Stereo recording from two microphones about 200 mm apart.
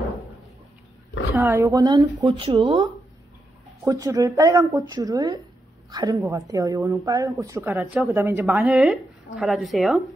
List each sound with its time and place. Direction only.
1.3 s a woman's voice: 15° right (ahead or behind)